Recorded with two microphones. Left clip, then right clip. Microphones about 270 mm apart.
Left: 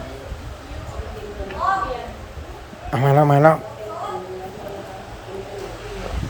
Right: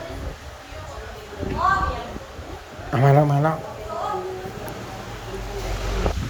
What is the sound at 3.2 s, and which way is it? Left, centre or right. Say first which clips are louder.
Speech: left 9 dB; centre.